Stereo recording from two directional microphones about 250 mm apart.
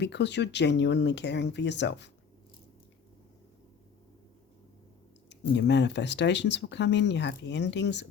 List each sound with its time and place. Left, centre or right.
0.0 s speech: left
5.3 s speech: left